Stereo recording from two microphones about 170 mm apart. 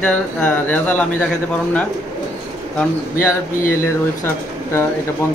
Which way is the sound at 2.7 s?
10° left (ahead or behind).